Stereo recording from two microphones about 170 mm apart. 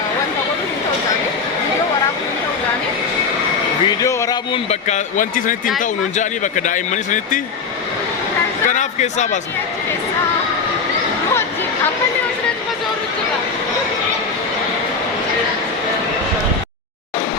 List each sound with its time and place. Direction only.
4.0 s a sound: 20° left (ahead or behind)
4.5 s speech: 40° left (ahead or behind)
8.7 s speech: 45° left (ahead or behind)